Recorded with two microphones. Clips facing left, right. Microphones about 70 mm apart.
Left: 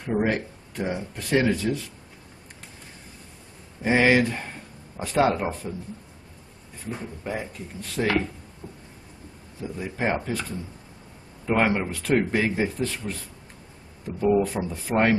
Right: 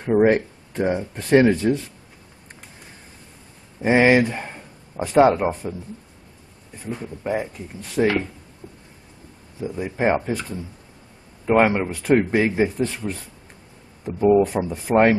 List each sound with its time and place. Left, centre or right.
0.0 s speech: right
3.8 s speech: centre
7.2 s speech: centre
9.6 s speech: centre